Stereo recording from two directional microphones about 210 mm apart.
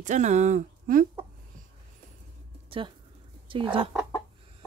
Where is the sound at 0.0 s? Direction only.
35° right (ahead or behind).